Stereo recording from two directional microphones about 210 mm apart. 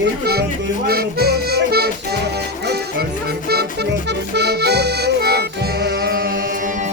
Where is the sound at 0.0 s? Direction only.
50° right (ahead or behind).